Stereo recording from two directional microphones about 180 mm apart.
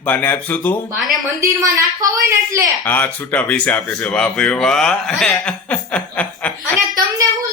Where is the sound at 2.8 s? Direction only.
10° left (ahead or behind).